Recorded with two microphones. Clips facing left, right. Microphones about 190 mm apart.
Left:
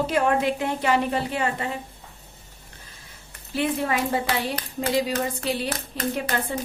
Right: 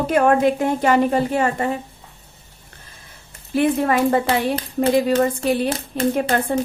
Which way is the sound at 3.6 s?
50° right (ahead or behind).